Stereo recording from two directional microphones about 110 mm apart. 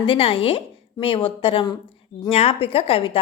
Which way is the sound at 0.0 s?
55° left (ahead or behind).